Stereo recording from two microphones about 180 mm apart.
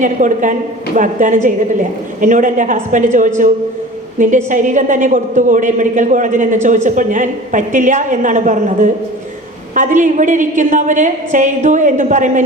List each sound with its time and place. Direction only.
0.0 s a woman's voice: 45° right (ahead or behind)